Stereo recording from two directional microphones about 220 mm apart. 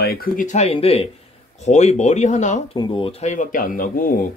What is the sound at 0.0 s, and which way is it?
Speech, 45° left (ahead or behind).